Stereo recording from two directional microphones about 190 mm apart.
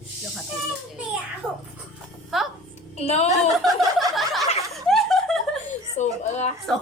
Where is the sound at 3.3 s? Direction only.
Centre (ahead or behind).